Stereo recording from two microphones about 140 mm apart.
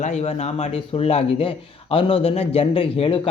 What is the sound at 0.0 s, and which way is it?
Speech, 50° left (ahead or behind).